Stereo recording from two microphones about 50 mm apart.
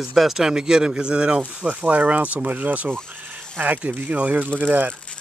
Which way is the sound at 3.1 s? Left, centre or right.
Right.